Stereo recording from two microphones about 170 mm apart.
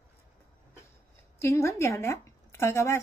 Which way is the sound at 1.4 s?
15° left (ahead or behind).